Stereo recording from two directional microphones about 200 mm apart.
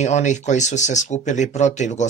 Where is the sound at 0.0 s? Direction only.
35° left (ahead or behind).